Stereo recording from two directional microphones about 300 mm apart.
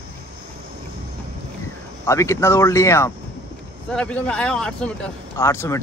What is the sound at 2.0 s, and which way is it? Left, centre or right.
Speech, centre.